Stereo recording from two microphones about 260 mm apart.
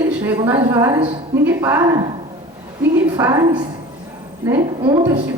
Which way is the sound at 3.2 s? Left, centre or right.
Centre.